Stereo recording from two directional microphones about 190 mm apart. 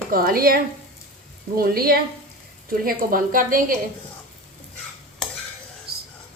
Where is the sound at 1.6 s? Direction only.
50° right (ahead or behind).